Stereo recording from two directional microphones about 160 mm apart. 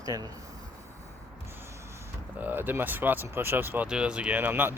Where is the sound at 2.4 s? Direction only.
10° right (ahead or behind).